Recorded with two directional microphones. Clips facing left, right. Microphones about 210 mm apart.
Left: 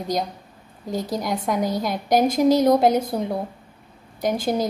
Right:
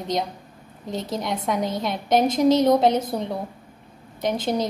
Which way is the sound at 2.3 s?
25° right (ahead or behind).